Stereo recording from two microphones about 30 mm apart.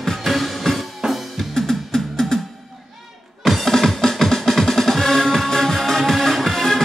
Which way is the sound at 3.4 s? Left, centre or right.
Centre.